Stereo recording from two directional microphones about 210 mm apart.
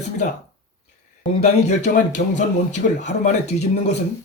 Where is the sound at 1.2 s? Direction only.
30° left (ahead or behind).